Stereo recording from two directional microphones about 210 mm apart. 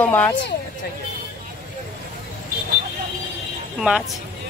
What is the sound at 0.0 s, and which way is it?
Speech, 10° left (ahead or behind).